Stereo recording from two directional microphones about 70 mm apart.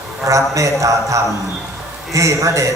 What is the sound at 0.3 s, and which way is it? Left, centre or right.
A man's voice, right.